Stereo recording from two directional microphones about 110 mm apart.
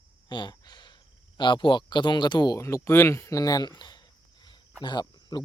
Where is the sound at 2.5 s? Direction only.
25° left (ahead or behind).